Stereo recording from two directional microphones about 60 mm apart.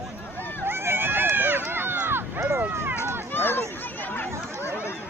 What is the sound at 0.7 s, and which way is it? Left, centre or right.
Run, right.